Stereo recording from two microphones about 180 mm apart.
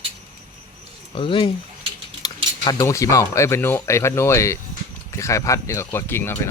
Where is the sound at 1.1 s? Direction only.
30° left (ahead or behind).